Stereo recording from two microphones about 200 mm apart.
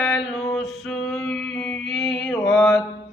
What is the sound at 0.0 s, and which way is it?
Male singing, centre (ahead or behind).